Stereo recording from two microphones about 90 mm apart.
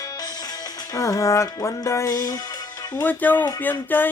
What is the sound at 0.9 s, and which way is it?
Music, 35° left (ahead or behind).